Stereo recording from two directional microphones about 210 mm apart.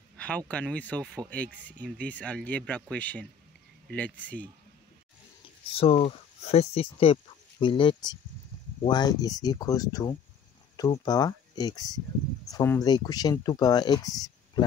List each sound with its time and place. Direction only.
0.5 s speech: 5° left (ahead or behind)
5.8 s speech: 30° left (ahead or behind)